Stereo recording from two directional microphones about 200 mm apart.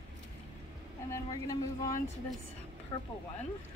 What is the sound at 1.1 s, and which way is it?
Speech, 20° left (ahead or behind).